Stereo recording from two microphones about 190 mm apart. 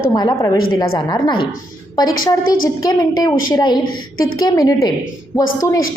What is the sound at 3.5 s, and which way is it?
A woman's voice, 20° left (ahead or behind).